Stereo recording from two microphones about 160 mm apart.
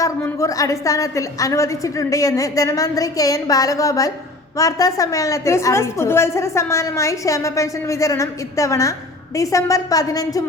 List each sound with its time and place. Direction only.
0.0 s a woman's voice: 20° left (ahead or behind)